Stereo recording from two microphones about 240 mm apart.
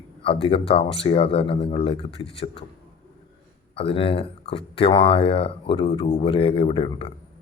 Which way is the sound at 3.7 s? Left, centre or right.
Left.